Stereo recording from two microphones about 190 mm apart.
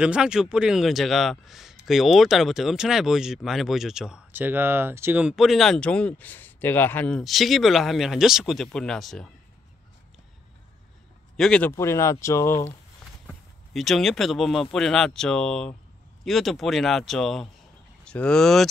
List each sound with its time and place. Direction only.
0.0 s speech: 5° right (ahead or behind)
11.3 s speech: 5° left (ahead or behind)
13.3 s speech: centre (ahead or behind)